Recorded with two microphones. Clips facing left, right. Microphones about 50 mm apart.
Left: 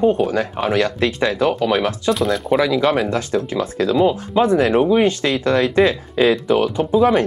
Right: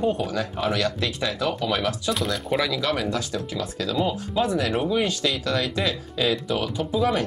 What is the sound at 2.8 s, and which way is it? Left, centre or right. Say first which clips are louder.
Speech: left 8 dB; left.